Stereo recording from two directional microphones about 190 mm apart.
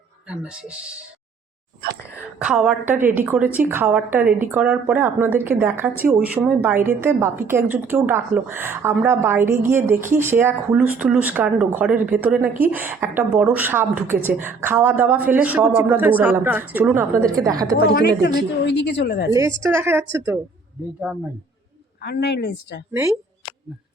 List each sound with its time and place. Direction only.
0.3 s speech: 5° right (ahead or behind)
2.4 s a woman's voice: 5° right (ahead or behind)
17.9 s a woman's voice: 60° left (ahead or behind)
19.3 s a woman's voice: 15° right (ahead or behind)
22.0 s a woman's voice: 60° left (ahead or behind)
22.9 s a woman's voice: 15° right (ahead or behind)